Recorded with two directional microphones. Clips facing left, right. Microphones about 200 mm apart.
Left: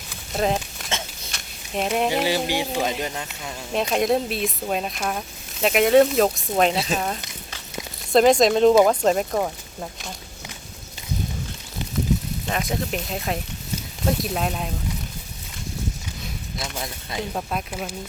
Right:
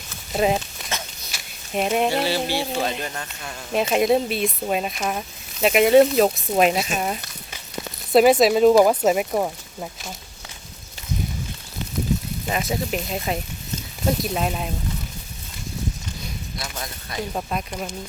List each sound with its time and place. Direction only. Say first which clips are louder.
0.3 s speech: right 2 dB; 5° right (ahead or behind)
1.3 s a sound: right 3 dB; 5° right (ahead or behind)
2.0 s music: even; 15° left (ahead or behind)
3.7 s speech: right 2 dB; 5° right (ahead or behind)
12.5 s speech: right 2 dB; 5° right (ahead or behind)
17.3 s speech: right 1 dB; centre (ahead or behind)